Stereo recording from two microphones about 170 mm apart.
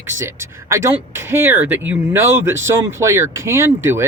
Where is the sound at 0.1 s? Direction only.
15° right (ahead or behind).